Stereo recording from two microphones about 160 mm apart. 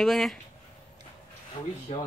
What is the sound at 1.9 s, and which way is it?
Speech, 40° left (ahead or behind).